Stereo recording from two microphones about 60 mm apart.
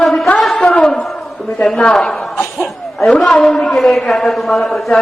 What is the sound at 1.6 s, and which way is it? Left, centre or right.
Speech, centre.